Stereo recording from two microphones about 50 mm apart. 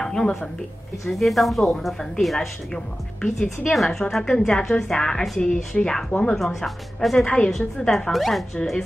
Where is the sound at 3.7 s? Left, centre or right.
Centre.